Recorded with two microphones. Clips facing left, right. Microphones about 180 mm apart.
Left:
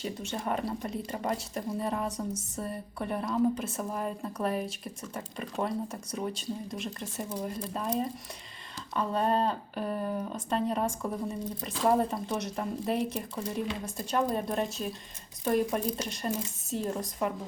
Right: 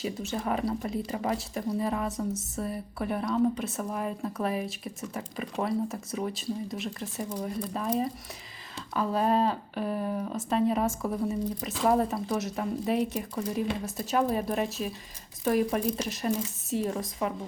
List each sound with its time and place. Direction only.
0.0 s speech: centre (ahead or behind)